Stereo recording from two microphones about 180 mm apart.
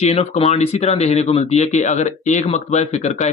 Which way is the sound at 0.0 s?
35° left (ahead or behind).